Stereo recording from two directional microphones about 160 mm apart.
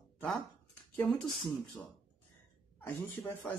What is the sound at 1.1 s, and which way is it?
Speech, centre (ahead or behind).